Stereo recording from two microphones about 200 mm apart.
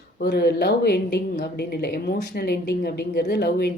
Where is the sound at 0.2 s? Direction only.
55° left (ahead or behind).